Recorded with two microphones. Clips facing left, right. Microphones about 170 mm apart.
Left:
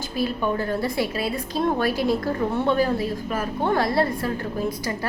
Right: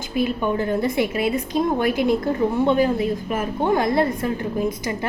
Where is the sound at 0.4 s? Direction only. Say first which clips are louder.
Right 3 dB; 20° right (ahead or behind).